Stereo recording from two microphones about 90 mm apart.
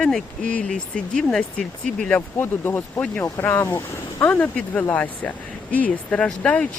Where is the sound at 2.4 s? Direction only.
25° left (ahead or behind).